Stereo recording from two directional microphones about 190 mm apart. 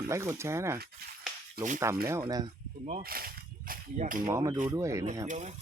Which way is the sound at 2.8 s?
45° right (ahead or behind).